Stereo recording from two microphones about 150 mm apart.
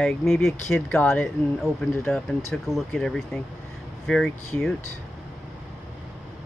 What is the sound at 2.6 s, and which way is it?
Speech, centre (ahead or behind).